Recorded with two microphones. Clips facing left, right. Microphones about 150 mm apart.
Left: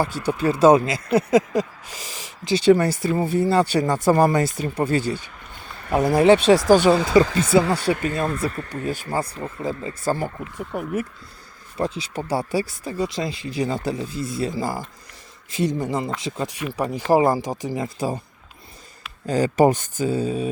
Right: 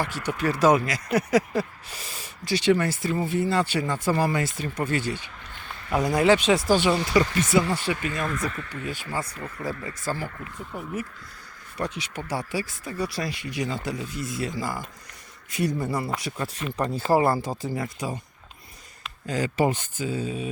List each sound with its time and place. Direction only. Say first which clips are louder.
0.0 s speech: left 5 dB; 30° left (ahead or behind)
2.6 s speech: left 6 dB; 35° left (ahead or behind)
6.7 s speech: left 6 dB; 45° left (ahead or behind)
7.5 s speech: left 6 dB; 30° left (ahead or behind)
9.4 s speech: left 5 dB; 25° left (ahead or behind)
10.0 s speech: left 8 dB; 45° left (ahead or behind)
10.7 s speech: left 7 dB; 70° left (ahead or behind)
11.8 s speech: left 5 dB; 30° left (ahead or behind)
15.5 s speech: left 3 dB; 20° left (ahead or behind)
16.6 s speech: left 2 dB; 10° left (ahead or behind)
17.8 s speech: left 6 dB; 35° left (ahead or behind)
19.2 s speech: left 7 dB; 35° left (ahead or behind)